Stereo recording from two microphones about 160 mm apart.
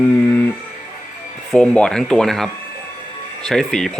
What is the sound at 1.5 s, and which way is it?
Speech, 5° left (ahead or behind).